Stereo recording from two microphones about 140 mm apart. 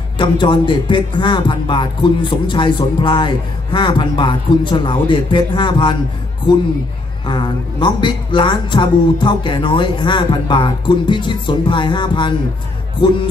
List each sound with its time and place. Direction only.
0.2 s a woman's voice: 35° left (ahead or behind)
7.2 s a woman's voice: 35° left (ahead or behind)